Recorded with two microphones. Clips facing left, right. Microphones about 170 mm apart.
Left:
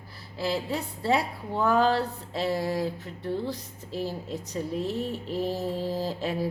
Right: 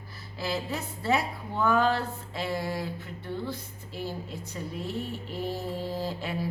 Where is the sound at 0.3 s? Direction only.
30° left (ahead or behind).